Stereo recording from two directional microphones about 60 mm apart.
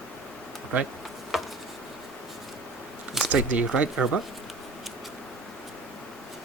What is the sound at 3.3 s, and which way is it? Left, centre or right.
Speech, right.